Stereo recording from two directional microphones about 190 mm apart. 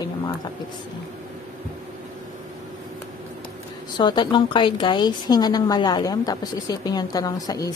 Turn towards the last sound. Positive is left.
turn(degrees=20)  # may be behind; listen again after turning